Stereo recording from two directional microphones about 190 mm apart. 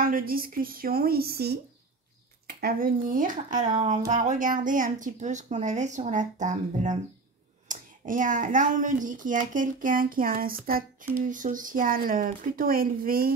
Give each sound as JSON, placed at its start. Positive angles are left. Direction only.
{"t": 0.0, "sound": "a woman's voice", "side_deg": -50}